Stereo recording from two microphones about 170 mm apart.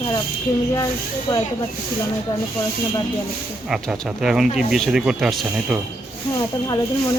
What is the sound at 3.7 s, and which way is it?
Speech, 5° right (ahead or behind).